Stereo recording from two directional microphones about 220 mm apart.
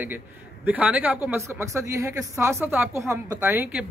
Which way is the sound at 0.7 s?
5° right (ahead or behind).